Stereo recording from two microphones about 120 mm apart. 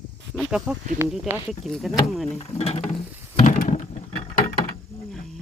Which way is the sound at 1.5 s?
Centre (ahead or behind).